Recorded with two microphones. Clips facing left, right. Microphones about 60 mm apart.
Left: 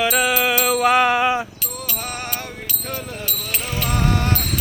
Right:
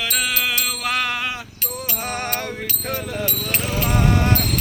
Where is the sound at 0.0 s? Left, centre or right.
Left.